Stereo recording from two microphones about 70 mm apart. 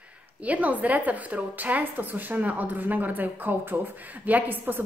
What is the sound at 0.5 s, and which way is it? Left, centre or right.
A woman's voice, right.